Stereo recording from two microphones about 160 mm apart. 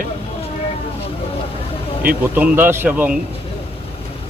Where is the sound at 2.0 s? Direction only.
10° right (ahead or behind).